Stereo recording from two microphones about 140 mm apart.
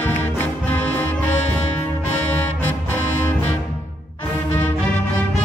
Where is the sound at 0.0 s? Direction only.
15° left (ahead or behind).